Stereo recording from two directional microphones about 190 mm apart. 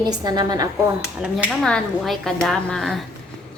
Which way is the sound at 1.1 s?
5° right (ahead or behind).